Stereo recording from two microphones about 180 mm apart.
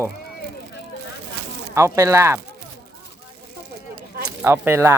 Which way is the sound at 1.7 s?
15° right (ahead or behind).